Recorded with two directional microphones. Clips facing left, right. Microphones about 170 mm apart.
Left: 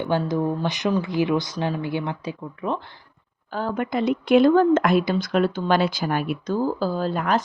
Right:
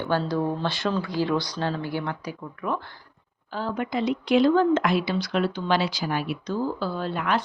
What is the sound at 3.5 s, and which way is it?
Speech, 50° left (ahead or behind).